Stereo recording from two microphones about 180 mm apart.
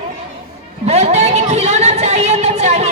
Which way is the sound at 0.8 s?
35° right (ahead or behind).